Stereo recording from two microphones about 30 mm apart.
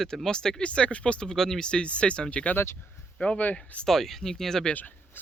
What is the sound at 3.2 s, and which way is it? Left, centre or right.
Speech, left.